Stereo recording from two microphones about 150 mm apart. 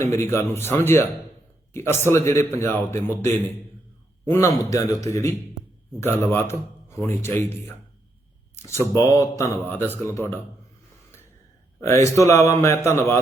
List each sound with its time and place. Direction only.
0.0 s a man's voice: 20° left (ahead or behind)
4.3 s a man's voice: 20° left (ahead or behind)
12.0 s speech: 20° left (ahead or behind)